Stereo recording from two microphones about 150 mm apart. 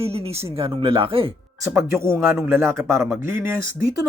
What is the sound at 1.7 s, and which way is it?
Speech, 15° right (ahead or behind).